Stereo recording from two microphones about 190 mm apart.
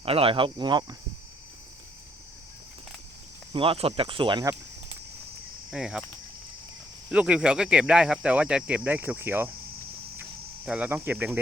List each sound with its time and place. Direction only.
0.0 s speech: 30° right (ahead or behind)
3.5 s speech: 30° right (ahead or behind)
5.7 s speech: 5° right (ahead or behind)
7.1 s speech: 5° right (ahead or behind)
10.7 s speech: 5° right (ahead or behind)